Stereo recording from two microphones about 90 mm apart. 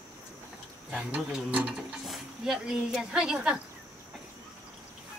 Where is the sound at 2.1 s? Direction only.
5° right (ahead or behind).